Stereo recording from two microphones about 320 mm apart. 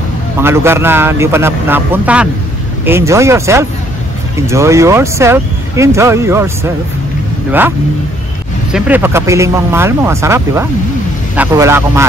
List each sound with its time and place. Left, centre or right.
0.4 s speech: centre
8.7 s speech: centre